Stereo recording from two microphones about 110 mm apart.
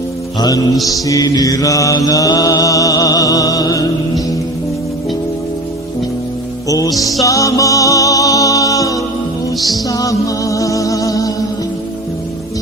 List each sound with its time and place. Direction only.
0.3 s mantra: 35° left (ahead or behind)
6.7 s music: 30° left (ahead or behind)
9.6 s music: centre (ahead or behind)
9.9 s music: 30° left (ahead or behind)